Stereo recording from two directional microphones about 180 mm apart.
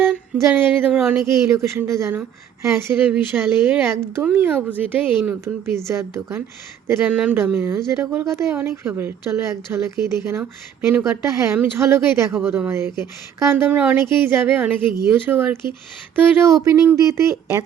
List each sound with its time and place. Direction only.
0.0 s speech: 10° right (ahead or behind)